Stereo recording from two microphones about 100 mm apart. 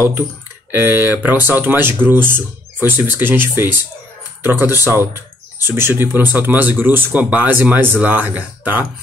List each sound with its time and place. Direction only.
0.7 s speech: 20° right (ahead or behind)